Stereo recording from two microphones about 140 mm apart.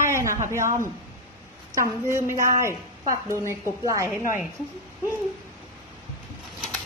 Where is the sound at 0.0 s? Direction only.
20° right (ahead or behind).